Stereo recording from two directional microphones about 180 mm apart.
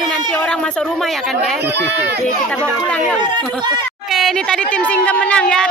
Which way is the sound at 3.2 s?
25° right (ahead or behind).